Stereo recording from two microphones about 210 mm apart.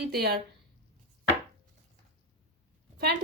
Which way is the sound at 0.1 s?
50° right (ahead or behind).